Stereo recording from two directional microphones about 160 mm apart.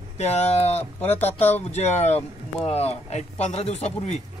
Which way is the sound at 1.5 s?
45° left (ahead or behind).